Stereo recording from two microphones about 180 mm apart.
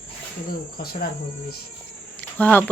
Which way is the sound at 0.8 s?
55° left (ahead or behind).